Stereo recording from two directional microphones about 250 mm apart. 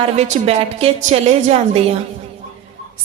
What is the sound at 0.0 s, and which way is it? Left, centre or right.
A woman's voice, right.